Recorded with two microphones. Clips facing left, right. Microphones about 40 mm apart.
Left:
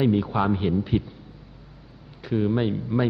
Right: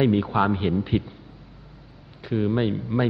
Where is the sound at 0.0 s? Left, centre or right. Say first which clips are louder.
Right 1 dB; centre.